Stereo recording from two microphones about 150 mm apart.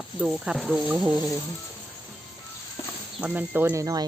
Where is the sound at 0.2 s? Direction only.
Centre (ahead or behind).